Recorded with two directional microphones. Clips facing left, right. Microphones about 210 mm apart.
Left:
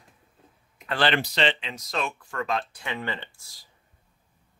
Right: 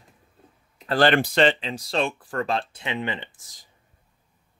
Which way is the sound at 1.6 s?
30° right (ahead or behind).